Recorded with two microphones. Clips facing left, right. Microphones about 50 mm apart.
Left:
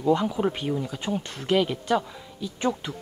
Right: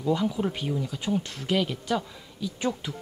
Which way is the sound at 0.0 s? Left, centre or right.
Left.